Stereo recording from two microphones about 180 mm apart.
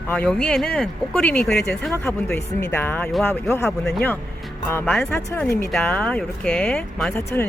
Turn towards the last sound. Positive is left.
turn(degrees=10)  # may be behind; listen again after turning